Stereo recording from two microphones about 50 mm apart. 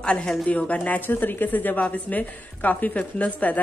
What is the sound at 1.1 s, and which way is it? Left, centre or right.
A woman's voice, left.